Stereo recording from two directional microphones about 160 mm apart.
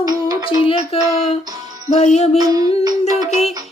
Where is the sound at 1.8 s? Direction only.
45° left (ahead or behind).